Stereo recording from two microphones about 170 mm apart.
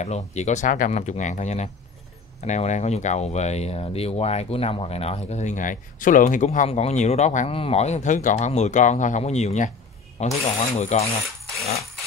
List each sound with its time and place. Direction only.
0.0 s speech: 40° left (ahead or behind)